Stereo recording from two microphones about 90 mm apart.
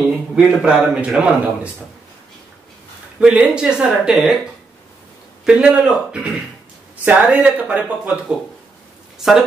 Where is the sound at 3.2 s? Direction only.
10° right (ahead or behind).